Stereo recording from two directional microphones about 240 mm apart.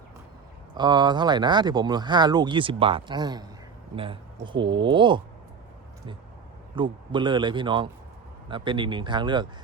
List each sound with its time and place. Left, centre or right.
0.8 s speech: centre
6.7 s speech: centre